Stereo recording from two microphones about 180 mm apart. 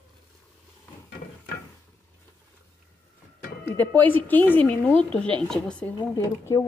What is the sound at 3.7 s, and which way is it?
A woman's voice, 10° left (ahead or behind).